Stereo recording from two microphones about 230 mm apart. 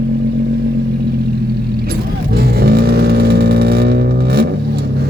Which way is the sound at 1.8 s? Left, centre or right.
Right.